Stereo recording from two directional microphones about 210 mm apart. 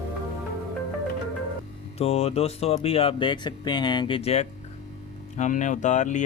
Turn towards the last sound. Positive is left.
turn(degrees=35)  # may be behind; listen again after turning